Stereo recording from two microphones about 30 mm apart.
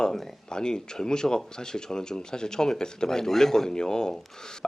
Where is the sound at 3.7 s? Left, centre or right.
Left.